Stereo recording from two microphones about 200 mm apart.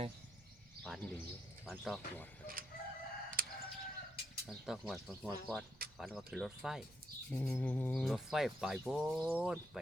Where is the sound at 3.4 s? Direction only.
45° right (ahead or behind).